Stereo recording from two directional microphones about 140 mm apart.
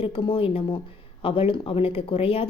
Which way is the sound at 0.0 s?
40° left (ahead or behind).